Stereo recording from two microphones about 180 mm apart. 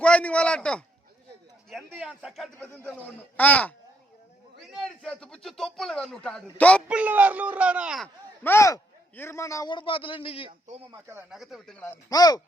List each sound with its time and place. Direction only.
0.0 s a man's voice: 5° left (ahead or behind)
1.9 s a man's voice: 5° right (ahead or behind)
6.8 s speech: 5° right (ahead or behind)
8.0 s a man's voice: 15° left (ahead or behind); by 10.5 s 30° left (ahead or behind)
10.9 s speech: 15° right (ahead or behind)
11.3 s a man's voice: centre (ahead or behind); by 12.4 s 20° left (ahead or behind)